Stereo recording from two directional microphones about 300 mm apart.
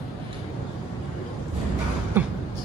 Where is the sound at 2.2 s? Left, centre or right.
Centre.